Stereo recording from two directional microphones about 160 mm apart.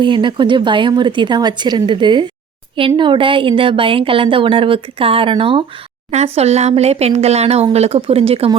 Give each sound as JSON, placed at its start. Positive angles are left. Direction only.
{"t": 0.0, "sound": "a woman's voice", "side_deg": -30}